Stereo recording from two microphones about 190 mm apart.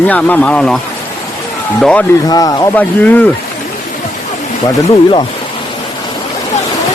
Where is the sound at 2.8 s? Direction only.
10° left (ahead or behind).